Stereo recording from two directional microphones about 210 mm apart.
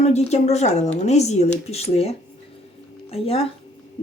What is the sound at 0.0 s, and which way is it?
A woman's voice, 30° left (ahead or behind).